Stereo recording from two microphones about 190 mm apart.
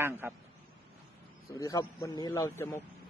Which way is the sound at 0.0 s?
10° right (ahead or behind).